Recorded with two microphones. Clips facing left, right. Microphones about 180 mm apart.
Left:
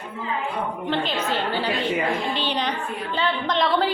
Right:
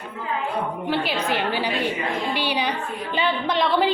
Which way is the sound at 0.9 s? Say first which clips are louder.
Even; 10° right (ahead or behind).